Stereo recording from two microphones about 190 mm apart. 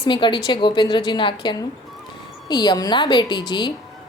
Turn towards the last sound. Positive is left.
turn(degrees=25)  # may be behind; listen again after turning